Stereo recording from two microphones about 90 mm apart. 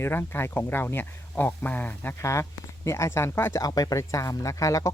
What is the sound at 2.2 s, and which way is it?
Speech, 30° left (ahead or behind).